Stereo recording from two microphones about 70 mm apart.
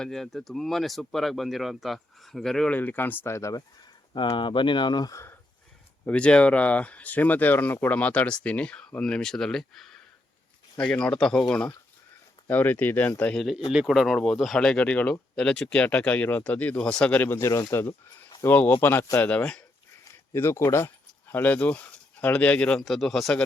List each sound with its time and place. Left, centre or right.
0.0 s speech: centre
2.6 s speech: left
4.1 s speech: left
6.1 s speech: centre
10.8 s speech: centre
12.5 s speech: left
13.3 s speech: centre
17.2 s speech: left
17.4 s speech: left
18.4 s speech: left
19.3 s speech: centre
20.3 s speech: left
21.3 s speech: left
22.8 s speech: centre